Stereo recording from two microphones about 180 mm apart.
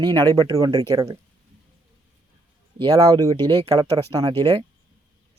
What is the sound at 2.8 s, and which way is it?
Speech, 20° right (ahead or behind).